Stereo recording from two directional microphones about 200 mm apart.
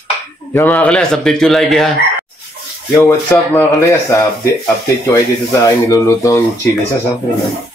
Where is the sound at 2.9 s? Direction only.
15° left (ahead or behind).